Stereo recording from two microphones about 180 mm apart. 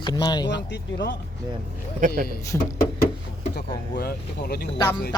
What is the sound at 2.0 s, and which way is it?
Speech, 45° right (ahead or behind).